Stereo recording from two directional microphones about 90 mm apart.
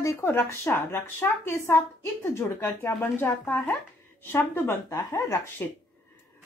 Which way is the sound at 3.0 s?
25° left (ahead or behind).